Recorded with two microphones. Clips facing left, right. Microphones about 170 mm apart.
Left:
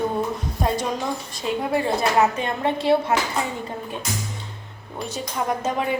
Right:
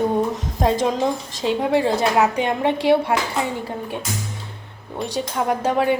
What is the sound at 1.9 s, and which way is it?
Speech, 20° right (ahead or behind).